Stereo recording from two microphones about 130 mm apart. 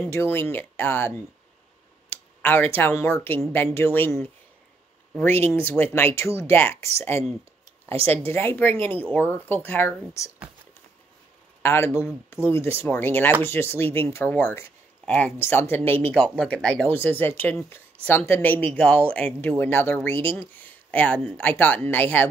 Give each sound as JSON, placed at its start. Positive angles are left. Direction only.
{"t": 0.0, "sound": "speech", "side_deg": 15}
{"t": 8.1, "sound": "speech", "side_deg": 20}
{"t": 11.6, "sound": "speech", "side_deg": 20}